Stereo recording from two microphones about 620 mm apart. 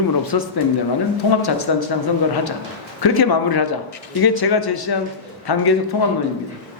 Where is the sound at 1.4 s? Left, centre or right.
Left.